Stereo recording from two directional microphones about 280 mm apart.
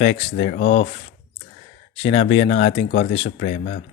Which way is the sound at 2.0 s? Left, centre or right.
Left.